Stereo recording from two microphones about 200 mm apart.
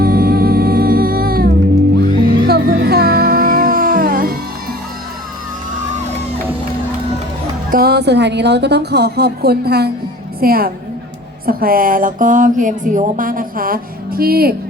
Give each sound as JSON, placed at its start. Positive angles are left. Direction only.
{"t": 0.0, "sound": "music", "side_deg": -50}
{"t": 7.7, "sound": "a woman's voice", "side_deg": -50}